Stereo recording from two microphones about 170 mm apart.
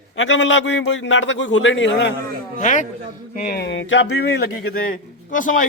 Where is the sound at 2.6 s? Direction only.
45° left (ahead or behind).